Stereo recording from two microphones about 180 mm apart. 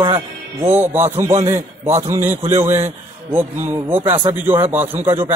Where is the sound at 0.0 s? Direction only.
25° right (ahead or behind).